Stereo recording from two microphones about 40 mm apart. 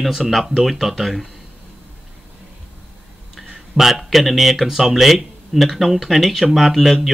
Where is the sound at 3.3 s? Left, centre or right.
Centre.